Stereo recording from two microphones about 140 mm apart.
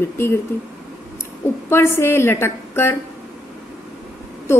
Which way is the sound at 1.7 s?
15° left (ahead or behind).